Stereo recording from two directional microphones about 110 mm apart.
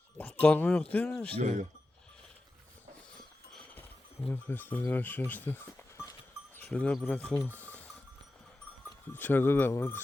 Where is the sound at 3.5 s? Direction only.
10° left (ahead or behind).